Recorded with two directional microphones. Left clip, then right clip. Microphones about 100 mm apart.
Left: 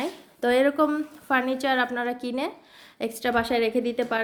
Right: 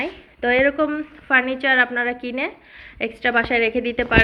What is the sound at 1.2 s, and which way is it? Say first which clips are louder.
A woman's voice: right 6 dB; 25° left (ahead or behind).